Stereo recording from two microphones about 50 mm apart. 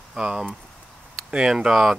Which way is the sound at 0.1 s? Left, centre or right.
Centre.